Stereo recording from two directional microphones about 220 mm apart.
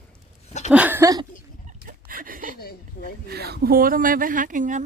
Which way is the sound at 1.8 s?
40° right (ahead or behind).